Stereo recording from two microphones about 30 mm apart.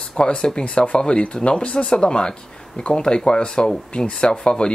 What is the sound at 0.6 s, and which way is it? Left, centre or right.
Speech, left.